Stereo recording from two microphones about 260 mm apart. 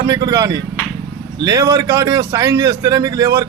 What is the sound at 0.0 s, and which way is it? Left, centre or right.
A man's voice, centre.